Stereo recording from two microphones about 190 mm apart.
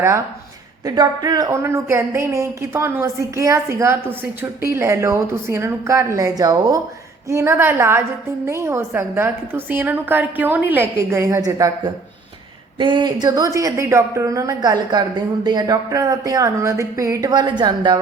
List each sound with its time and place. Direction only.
0.9 s speech: 20° right (ahead or behind)
12.8 s a woman's voice: 25° right (ahead or behind)